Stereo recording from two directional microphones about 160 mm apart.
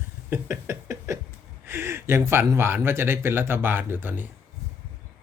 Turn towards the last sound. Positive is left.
turn(degrees=-10)  # may be behind; listen again after turning